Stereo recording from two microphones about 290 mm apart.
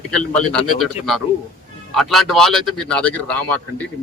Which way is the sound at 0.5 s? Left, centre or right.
Centre.